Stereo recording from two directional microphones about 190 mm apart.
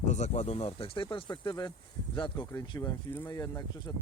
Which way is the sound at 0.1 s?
35° left (ahead or behind).